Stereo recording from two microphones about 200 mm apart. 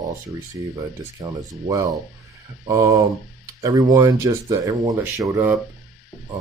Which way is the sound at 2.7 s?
15° right (ahead or behind).